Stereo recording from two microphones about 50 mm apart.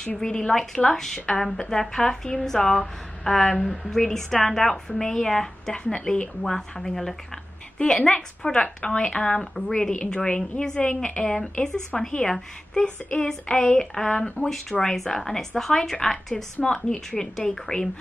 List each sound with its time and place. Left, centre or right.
0.0 s a woman's voice: centre